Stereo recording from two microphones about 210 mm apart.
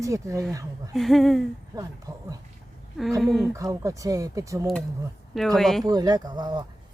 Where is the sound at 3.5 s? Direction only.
15° right (ahead or behind).